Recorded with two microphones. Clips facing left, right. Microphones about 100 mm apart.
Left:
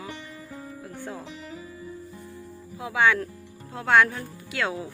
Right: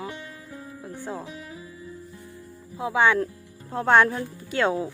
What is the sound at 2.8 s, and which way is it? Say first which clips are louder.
Speech: right 2 dB; 25° right (ahead or behind).